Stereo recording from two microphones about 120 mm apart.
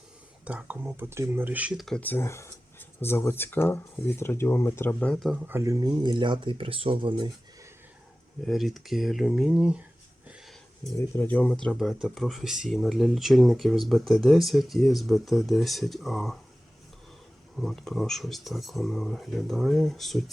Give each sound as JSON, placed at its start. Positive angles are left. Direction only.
{"t": 0.4, "sound": "speech", "side_deg": -10}
{"t": 2.0, "sound": "speech", "side_deg": 15}
{"t": 5.5, "sound": "speech", "side_deg": -20}
{"t": 5.8, "sound": "speech", "side_deg": -40}
{"t": 8.4, "sound": "speech", "side_deg": 0}
{"t": 10.9, "sound": "speech", "side_deg": 15}
{"t": 11.6, "sound": "speech", "side_deg": 0}
{"t": 17.6, "sound": "speech", "side_deg": 5}